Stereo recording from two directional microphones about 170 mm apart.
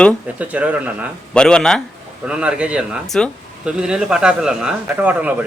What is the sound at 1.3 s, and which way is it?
Speech, 5° left (ahead or behind).